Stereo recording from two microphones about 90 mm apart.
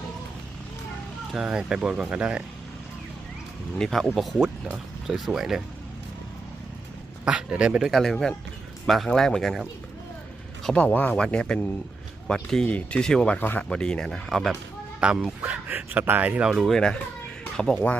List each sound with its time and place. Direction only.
1.3 s speech: 10° right (ahead or behind)
3.8 s speech: 5° left (ahead or behind)
7.3 s speech: 10° right (ahead or behind); by 10.8 s 5° left (ahead or behind)
10.8 s speech: 20° left (ahead or behind)
13.4 s speech: 20° left (ahead or behind)
13.7 s speech: 10° left (ahead or behind)
15.0 s speech: 10° right (ahead or behind)
16.5 s speech: centre (ahead or behind)